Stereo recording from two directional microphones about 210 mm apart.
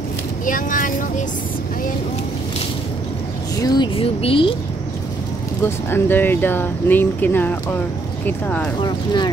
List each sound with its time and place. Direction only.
0.5 s speech: 40° left (ahead or behind)
3.6 s speech: 20° left (ahead or behind)
5.9 s speech: 10° left (ahead or behind)
8.8 s speech: 20° left (ahead or behind)